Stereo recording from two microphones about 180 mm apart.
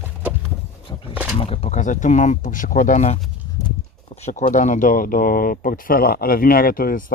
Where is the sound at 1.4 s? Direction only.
35° left (ahead or behind).